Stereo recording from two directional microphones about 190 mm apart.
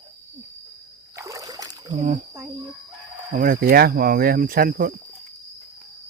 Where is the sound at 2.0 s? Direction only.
40° right (ahead or behind).